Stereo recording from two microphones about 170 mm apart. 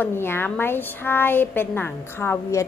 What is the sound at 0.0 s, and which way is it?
A woman's voice, 15° left (ahead or behind).